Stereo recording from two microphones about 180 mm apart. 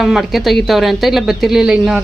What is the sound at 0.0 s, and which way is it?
A woman's voice, centre (ahead or behind).